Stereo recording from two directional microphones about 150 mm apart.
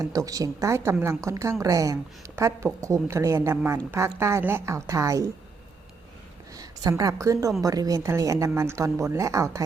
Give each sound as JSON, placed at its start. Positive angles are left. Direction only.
{"t": 0.0, "sound": "a woman's voice", "side_deg": -20}
{"t": 6.5, "sound": "a woman's voice", "side_deg": -25}